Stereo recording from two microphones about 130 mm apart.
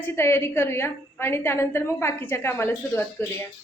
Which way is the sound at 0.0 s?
20° left (ahead or behind).